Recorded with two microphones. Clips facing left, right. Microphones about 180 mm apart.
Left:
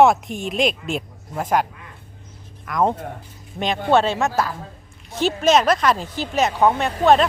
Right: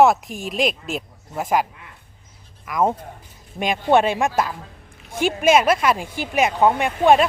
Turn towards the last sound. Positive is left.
turn(degrees=-10)  # may be behind; listen again after turning